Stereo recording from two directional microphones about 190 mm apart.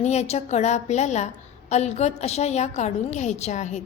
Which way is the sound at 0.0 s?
35° left (ahead or behind).